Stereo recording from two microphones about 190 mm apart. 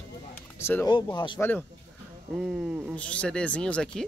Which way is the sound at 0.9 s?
25° left (ahead or behind).